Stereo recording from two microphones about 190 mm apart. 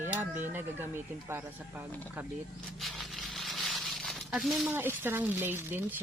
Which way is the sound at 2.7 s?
Centre (ahead or behind).